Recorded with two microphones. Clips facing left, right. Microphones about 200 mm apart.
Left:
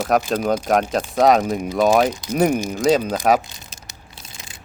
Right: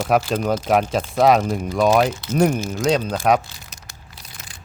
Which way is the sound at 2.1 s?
15° left (ahead or behind).